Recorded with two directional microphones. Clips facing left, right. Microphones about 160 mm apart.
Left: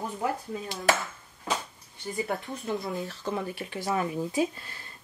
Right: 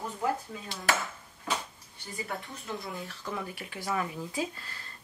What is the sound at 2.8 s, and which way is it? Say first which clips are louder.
Speech: left 6 dB; 20° left (ahead or behind).